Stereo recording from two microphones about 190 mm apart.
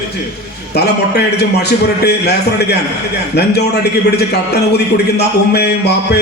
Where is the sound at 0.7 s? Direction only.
60° left (ahead or behind).